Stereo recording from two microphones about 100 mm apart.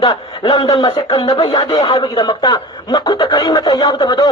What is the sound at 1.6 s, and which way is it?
Speech, 65° left (ahead or behind).